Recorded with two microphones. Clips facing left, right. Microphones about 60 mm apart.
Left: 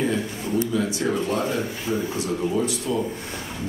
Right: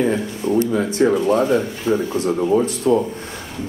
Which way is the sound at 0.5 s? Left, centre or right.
Right.